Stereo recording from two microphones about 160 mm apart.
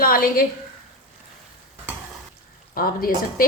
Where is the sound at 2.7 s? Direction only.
65° left (ahead or behind).